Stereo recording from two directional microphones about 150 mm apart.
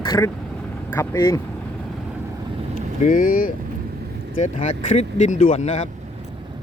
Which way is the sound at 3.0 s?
65° left (ahead or behind).